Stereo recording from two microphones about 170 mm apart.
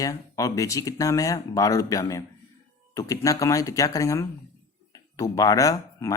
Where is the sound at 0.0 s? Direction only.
20° left (ahead or behind).